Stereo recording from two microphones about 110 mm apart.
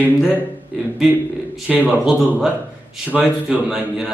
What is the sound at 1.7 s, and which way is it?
Speech, 5° right (ahead or behind).